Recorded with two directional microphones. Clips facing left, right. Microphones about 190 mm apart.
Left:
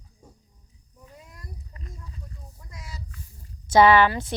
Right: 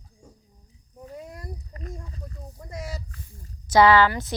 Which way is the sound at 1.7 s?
45° right (ahead or behind).